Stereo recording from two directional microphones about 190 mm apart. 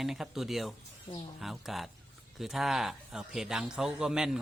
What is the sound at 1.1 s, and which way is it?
Speech, 25° left (ahead or behind).